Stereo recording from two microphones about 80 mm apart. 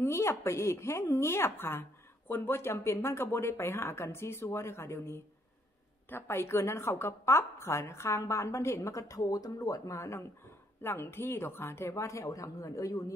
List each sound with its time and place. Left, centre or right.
0.0 s a woman's voice: left